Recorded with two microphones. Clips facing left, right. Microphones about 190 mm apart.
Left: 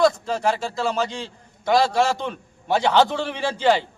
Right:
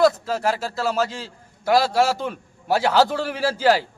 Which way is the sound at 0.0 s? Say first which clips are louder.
Right 1 dB; 5° right (ahead or behind).